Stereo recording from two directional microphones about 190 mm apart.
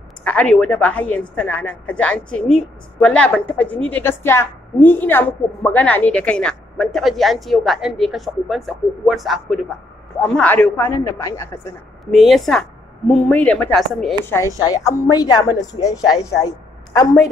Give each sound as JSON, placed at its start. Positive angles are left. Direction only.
{"t": 0.2, "sound": "a woman's voice", "side_deg": 5}
{"t": 12.1, "sound": "speech", "side_deg": 0}
{"t": 14.3, "sound": "a woman's voice", "side_deg": 15}
{"t": 16.4, "sound": "a sound", "side_deg": 20}